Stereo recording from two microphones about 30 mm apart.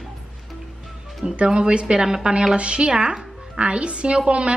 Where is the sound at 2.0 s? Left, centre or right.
Right.